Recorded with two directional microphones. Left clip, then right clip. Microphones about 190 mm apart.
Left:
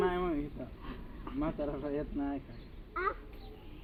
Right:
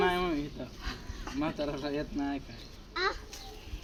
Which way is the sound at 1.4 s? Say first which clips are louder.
Right 2 dB; 40° right (ahead or behind).